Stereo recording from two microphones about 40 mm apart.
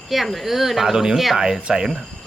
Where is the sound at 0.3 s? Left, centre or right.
Centre.